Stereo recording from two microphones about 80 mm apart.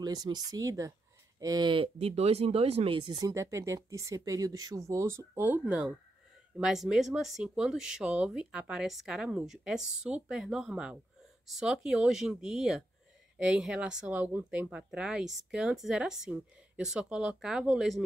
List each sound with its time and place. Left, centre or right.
0.0 s speech: right
1.6 s speech: right
2.9 s speech: right
3.2 s speech: right
5.4 s speech: right
6.5 s speech: centre
10.4 s speech: centre